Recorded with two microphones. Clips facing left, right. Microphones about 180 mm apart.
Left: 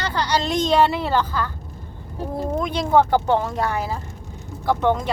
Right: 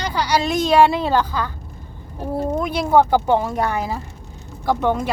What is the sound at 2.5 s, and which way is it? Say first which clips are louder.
Vehicle: right 1 dB; 10° right (ahead or behind).